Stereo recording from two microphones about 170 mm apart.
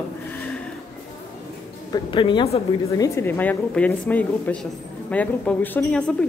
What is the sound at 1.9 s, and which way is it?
A woman's voice, 30° left (ahead or behind).